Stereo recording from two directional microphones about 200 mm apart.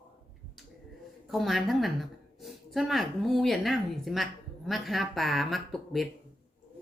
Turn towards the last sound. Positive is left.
turn(degrees=0)  # may be behind; listen again after turning